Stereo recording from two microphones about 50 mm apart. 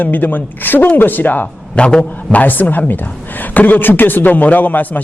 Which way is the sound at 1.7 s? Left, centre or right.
Centre.